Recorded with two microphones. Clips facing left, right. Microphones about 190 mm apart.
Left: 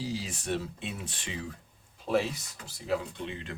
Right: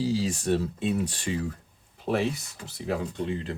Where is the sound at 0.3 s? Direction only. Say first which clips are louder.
Right 7 dB; 45° right (ahead or behind).